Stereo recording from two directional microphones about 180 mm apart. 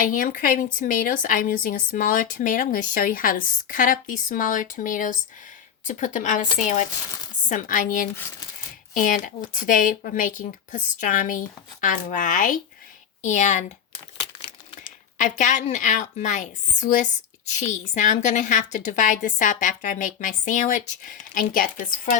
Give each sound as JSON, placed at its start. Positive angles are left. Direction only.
{"t": 0.0, "sound": "speech", "side_deg": 50}
{"t": 14.8, "sound": "speech", "side_deg": 45}